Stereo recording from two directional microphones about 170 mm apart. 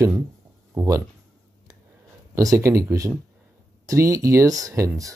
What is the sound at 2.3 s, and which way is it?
Speech, 20° right (ahead or behind).